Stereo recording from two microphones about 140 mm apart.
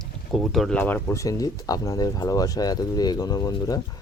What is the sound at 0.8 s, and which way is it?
Speech, 15° left (ahead or behind).